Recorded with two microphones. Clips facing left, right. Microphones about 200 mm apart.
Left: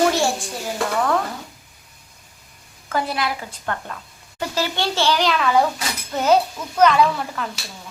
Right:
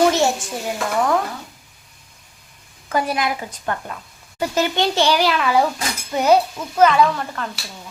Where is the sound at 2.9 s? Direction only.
15° right (ahead or behind); by 7.4 s centre (ahead or behind).